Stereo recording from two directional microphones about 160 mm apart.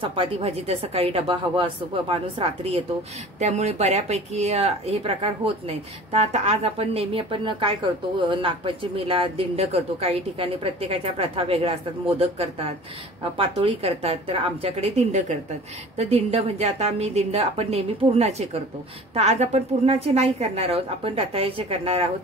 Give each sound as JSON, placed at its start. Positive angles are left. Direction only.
{"t": 0.0, "sound": "a woman's voice", "side_deg": -35}